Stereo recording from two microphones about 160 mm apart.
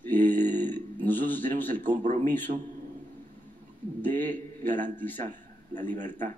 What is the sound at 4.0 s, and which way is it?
A man's voice, 10° left (ahead or behind).